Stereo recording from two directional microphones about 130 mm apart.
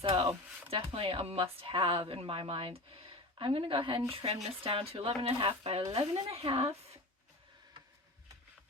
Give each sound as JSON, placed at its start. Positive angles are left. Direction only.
{"t": 0.0, "sound": "speech", "side_deg": -45}